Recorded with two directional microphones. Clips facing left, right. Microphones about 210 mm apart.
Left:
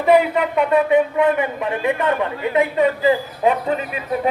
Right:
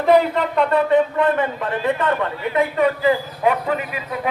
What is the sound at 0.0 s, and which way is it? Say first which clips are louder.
A man's voice: even; 5° left (ahead or behind).